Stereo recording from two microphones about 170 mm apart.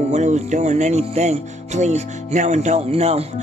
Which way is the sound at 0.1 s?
45° right (ahead or behind).